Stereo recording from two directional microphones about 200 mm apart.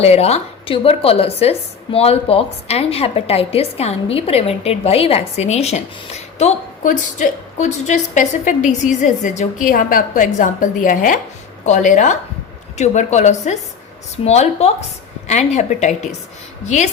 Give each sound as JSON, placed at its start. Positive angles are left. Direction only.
{"t": 0.0, "sound": "a woman's voice", "side_deg": 30}